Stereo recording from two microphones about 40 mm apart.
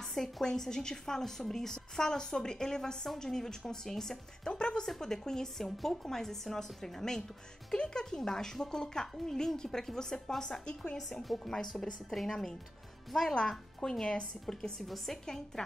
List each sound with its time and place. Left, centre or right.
0.0 s a woman's voice: centre
4.5 s a woman's voice: left
11.0 s a woman's voice: centre
13.1 s a woman's voice: centre